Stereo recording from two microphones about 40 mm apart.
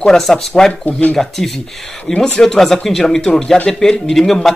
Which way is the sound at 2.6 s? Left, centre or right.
Centre.